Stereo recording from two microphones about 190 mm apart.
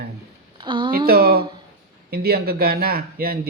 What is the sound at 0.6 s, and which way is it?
Speech, 25° right (ahead or behind).